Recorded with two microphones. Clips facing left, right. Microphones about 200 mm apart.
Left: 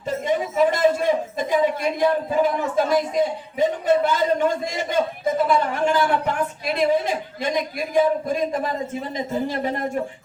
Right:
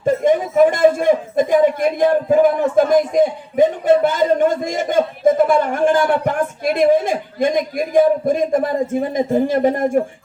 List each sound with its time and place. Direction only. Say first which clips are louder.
0.0 s a man's voice: right 8 dB; 50° right (ahead or behind)